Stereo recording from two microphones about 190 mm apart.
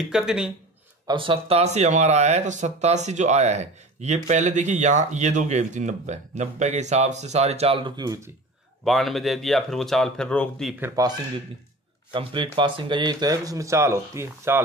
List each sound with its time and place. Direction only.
0.0 s speech: centre (ahead or behind)
1.0 s speech: 25° right (ahead or behind)
8.8 s speech: centre (ahead or behind)
10.8 s speech: 20° right (ahead or behind)